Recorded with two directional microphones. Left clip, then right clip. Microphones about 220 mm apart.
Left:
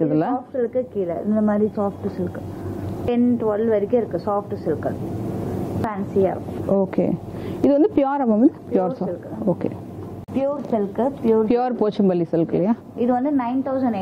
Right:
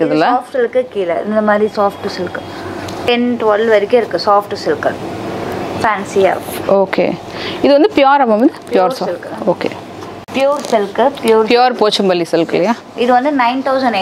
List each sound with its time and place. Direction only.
0.0 s speech: 10° right (ahead or behind)
4.2 s speech: 20° right (ahead or behind)
9.0 s speech: 30° right (ahead or behind)
10.7 s speech: 10° right (ahead or behind)